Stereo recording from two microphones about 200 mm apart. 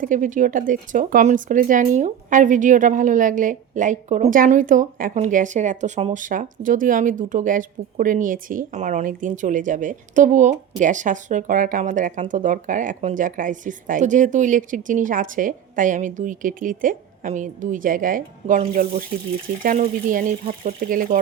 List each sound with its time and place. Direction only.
0.0 s speech: 40° right (ahead or behind)